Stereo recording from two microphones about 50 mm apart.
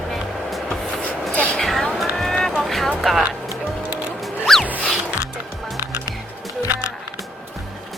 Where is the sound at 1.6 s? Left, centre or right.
Centre.